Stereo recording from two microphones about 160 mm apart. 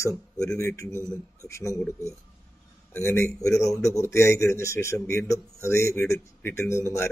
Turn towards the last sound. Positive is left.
turn(degrees=15)  # may be behind; listen again after turning